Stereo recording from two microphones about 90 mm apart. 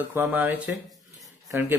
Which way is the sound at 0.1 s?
20° right (ahead or behind).